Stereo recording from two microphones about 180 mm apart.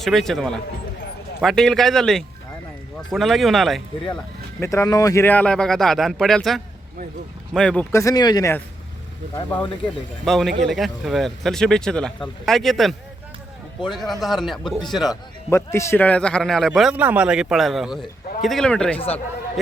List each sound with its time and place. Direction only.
0.0 s a man's voice: centre (ahead or behind)
4.6 s a man's voice: 15° left (ahead or behind)
7.9 s a man's voice: 20° left (ahead or behind); by 15.2 s centre (ahead or behind)
15.4 s a man's voice: 15° left (ahead or behind)